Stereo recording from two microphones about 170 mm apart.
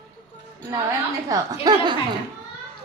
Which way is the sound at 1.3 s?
20° right (ahead or behind).